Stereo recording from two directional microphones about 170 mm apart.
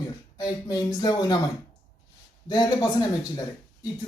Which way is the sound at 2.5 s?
25° left (ahead or behind).